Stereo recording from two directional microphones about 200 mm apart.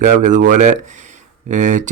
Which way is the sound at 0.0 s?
40° right (ahead or behind).